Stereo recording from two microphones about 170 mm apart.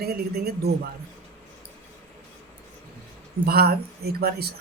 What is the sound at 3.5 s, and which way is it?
Speech, 65° right (ahead or behind).